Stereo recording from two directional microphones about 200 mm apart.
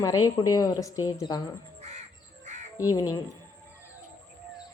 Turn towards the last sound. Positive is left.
turn(degrees=20)  # may be behind; listen again after turning